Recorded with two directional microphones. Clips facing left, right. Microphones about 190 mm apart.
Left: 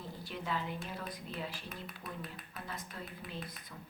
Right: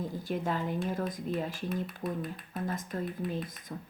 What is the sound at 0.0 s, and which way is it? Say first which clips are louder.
A woman's voice: right 10 dB; 45° right (ahead or behind).